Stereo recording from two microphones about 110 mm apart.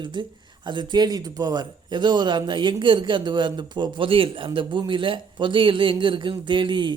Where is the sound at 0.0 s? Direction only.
45° right (ahead or behind).